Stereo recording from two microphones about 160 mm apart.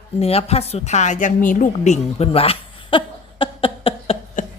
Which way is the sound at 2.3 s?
35° left (ahead or behind).